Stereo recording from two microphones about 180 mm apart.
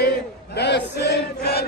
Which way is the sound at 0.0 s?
65° left (ahead or behind).